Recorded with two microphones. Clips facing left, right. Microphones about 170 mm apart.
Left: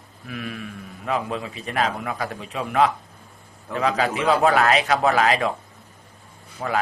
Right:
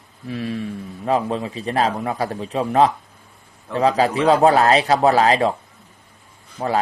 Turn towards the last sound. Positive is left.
turn(degrees=-30)  # may be behind; listen again after turning